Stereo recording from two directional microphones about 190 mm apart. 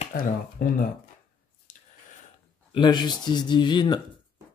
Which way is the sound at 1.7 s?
40° left (ahead or behind).